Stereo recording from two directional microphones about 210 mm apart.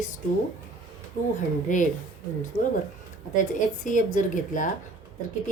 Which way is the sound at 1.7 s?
35° left (ahead or behind).